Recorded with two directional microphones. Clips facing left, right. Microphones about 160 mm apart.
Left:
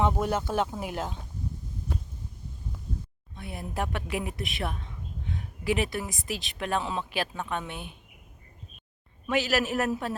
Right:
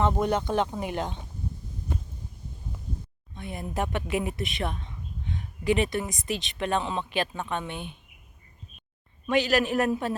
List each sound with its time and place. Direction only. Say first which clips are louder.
0.0 s speech: right 2 dB; 5° left (ahead or behind)
3.3 s speech: right 2 dB; 5° left (ahead or behind)
9.2 s speech: right 3 dB; 5° left (ahead or behind)